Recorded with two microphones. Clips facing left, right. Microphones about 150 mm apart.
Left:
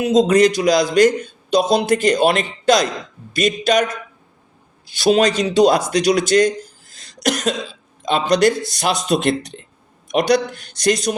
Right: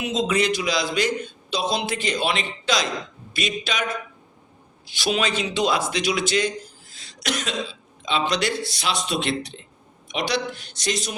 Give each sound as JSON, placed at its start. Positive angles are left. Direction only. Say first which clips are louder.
{"t": 0.0, "sound": "a man's voice", "louder": "left 10 dB", "side_deg": 40}
{"t": 4.9, "sound": "a man's voice", "louder": "left 9 dB", "side_deg": 40}